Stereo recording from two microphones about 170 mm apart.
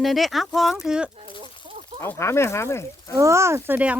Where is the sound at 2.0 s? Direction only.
15° left (ahead or behind).